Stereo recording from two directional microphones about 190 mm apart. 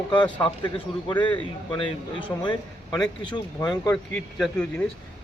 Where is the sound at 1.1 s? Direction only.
10° left (ahead or behind).